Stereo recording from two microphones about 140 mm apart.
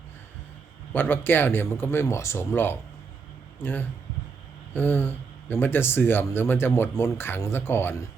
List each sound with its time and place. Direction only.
0.9 s speech: 15° left (ahead or behind)